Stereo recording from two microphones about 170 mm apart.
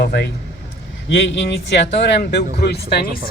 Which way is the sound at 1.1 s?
90° left.